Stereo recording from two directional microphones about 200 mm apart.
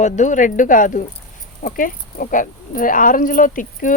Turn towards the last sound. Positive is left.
turn(degrees=40)  # may be behind; listen again after turning